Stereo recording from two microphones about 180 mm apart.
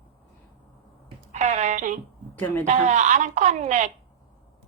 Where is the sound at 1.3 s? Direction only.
40° right (ahead or behind).